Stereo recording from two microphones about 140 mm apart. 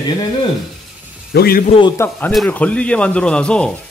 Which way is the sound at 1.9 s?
15° left (ahead or behind).